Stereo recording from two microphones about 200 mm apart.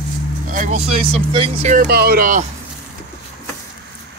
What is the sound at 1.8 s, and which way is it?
Speech, 50° right (ahead or behind).